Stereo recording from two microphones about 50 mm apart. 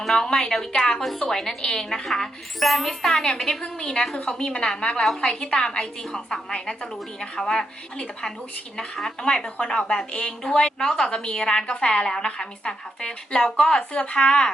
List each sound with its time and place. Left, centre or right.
0.0 s a woman's voice: centre